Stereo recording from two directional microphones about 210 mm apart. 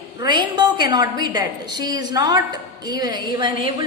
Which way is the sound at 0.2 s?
20° right (ahead or behind).